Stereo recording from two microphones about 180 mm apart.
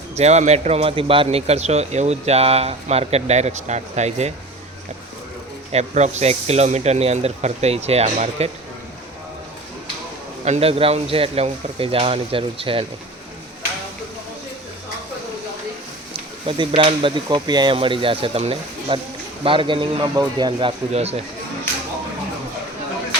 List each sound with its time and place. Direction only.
0.2 s speech: 40° right (ahead or behind)
5.7 s speech: 40° right (ahead or behind)
10.4 s speech: 35° right (ahead or behind)
16.5 s speech: 30° right (ahead or behind)